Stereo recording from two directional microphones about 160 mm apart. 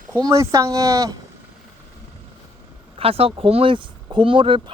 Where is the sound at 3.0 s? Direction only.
35° right (ahead or behind).